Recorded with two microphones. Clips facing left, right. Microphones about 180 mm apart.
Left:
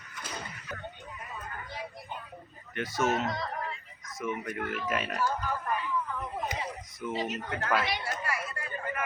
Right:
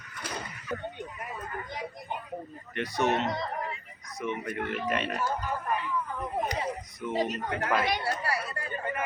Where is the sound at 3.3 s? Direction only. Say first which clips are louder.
Right 2 dB; 20° right (ahead or behind).